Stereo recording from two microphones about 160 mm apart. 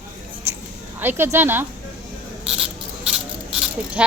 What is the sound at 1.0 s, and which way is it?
Speech, 15° right (ahead or behind).